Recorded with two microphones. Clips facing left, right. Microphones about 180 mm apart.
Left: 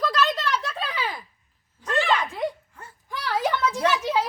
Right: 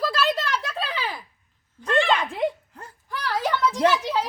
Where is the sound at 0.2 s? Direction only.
10° right (ahead or behind).